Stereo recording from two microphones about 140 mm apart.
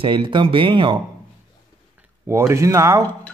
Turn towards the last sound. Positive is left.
turn(degrees=-20)  # may be behind; listen again after turning